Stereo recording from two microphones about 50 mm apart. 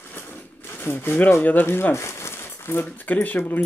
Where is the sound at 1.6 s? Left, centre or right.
Left.